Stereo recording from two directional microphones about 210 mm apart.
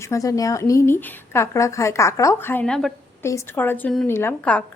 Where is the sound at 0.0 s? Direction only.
15° left (ahead or behind).